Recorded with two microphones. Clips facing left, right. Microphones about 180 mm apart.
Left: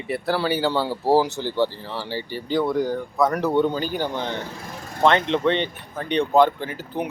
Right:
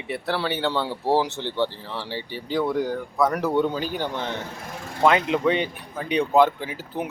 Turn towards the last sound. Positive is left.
turn(degrees=-5)  # may be behind; listen again after turning